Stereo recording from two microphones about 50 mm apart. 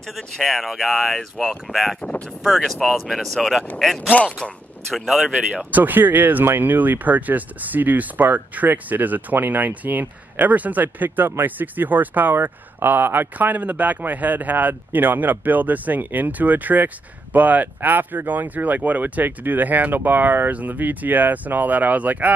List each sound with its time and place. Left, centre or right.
0.1 s speech: centre
2.0 s speech: left
2.4 s speech: centre
4.4 s speech: centre
5.5 s speech: right